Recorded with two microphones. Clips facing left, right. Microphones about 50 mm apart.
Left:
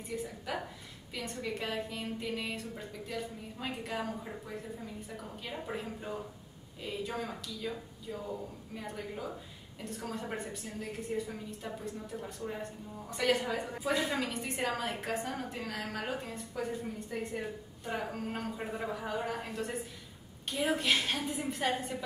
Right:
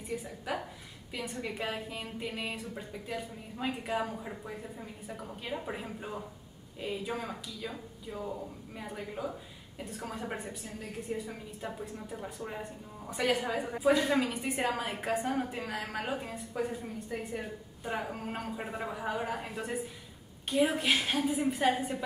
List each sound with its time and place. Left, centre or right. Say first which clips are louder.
1.1 s a woman's voice: right 1 dB; centre
11.6 s a woman's voice: right 3 dB; centre